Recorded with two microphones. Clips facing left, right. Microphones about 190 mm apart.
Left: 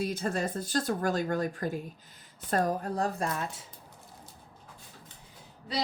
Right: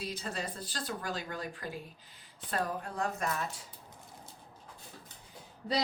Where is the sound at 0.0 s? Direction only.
50° left (ahead or behind).